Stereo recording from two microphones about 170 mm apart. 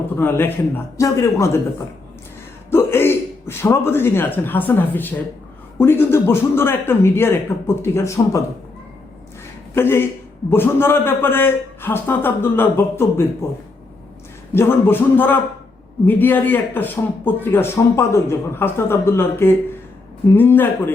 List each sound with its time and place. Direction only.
0.2 s a man's voice: 15° left (ahead or behind)
2.6 s a man's voice: 15° left (ahead or behind)
9.7 s a man's voice: 15° left (ahead or behind)
14.5 s a man's voice: 15° left (ahead or behind)